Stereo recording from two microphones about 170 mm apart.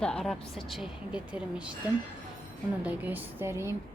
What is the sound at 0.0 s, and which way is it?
A woman's voice, 5° left (ahead or behind).